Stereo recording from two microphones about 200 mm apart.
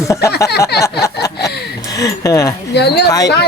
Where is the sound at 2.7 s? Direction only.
55° left (ahead or behind).